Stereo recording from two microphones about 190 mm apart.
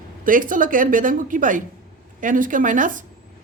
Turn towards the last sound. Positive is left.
turn(degrees=-45)  # may be behind; listen again after turning